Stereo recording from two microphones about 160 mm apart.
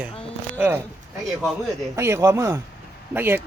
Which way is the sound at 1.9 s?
15° right (ahead or behind).